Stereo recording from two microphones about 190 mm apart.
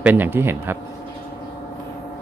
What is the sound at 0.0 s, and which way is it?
Speech, 10° right (ahead or behind).